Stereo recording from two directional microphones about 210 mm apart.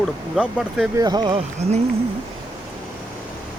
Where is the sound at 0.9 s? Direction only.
20° right (ahead or behind).